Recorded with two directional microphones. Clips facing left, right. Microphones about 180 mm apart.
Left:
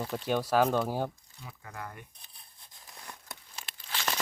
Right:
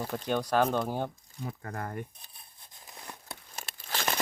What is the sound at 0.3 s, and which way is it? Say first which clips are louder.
Speech: left 1 dB; 5° left (ahead or behind).